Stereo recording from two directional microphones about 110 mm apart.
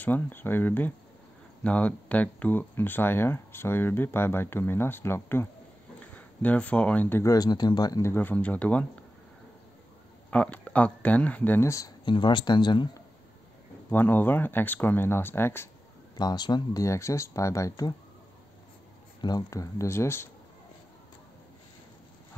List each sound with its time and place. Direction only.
0.0 s speech: 15° left (ahead or behind)
7.2 s speech: 35° left (ahead or behind)
8.0 s speech: 20° left (ahead or behind)
10.3 s speech: 10° left (ahead or behind); by 11.9 s 25° left (ahead or behind)
12.0 s speech: 45° left (ahead or behind)
13.8 s speech: 20° left (ahead or behind)
16.2 s speech: 40° left (ahead or behind)
16.8 s speech: 25° left (ahead or behind)
19.2 s speech: 35° left (ahead or behind)